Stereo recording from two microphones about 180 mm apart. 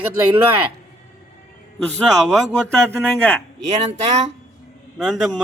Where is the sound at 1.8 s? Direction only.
5° left (ahead or behind).